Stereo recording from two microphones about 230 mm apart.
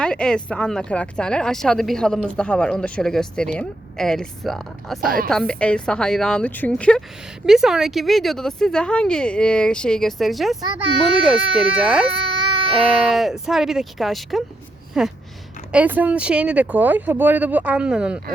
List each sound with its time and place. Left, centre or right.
0.0 s speech: centre
12.5 s baby cry: right
13.1 s speech: centre